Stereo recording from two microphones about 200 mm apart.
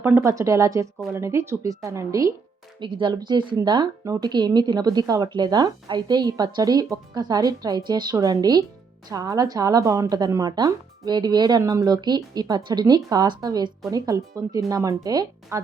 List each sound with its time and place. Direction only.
0.0 s speech: 10° right (ahead or behind)